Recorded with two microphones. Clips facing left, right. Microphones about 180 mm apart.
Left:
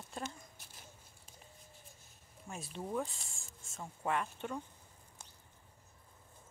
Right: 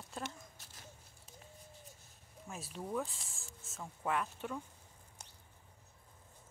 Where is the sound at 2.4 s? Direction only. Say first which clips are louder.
Left 1 dB; centre (ahead or behind).